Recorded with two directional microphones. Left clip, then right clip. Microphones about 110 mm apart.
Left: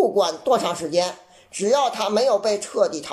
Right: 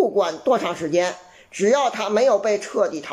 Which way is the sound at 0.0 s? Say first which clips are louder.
Even; 25° left (ahead or behind).